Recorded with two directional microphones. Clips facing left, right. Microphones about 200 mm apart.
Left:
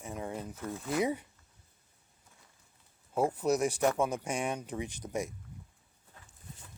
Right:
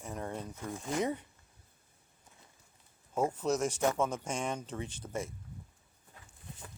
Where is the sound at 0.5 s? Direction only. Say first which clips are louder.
Left 2 dB; 15° right (ahead or behind).